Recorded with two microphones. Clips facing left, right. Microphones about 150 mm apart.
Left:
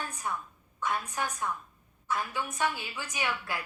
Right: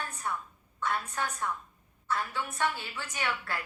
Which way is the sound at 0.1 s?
10° left (ahead or behind).